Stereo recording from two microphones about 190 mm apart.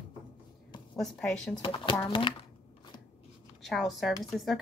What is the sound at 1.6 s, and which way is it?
Speech, 30° left (ahead or behind).